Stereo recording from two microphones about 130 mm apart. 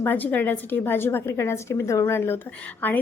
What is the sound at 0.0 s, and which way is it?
A woman's voice, 15° left (ahead or behind).